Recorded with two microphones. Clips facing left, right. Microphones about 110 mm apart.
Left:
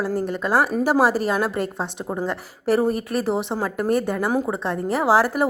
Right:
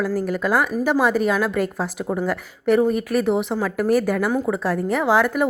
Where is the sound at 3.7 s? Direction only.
30° left (ahead or behind).